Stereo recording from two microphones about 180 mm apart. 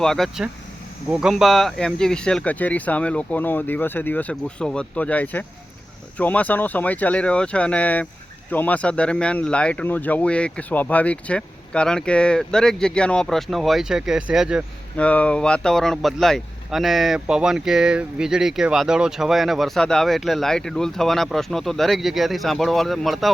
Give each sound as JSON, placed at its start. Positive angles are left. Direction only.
{"t": 0.0, "sound": "speech", "side_deg": 0}
{"t": 14.9, "sound": "speech", "side_deg": 5}